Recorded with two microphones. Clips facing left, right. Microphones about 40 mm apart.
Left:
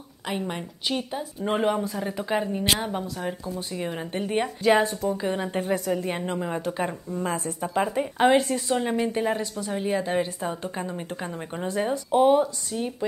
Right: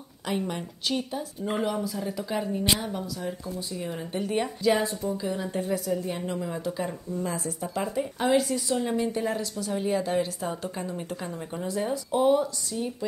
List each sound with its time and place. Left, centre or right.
0.3 s speech: centre
1.4 s a woman's voice: left
7.7 s speech: left
12.1 s speech: left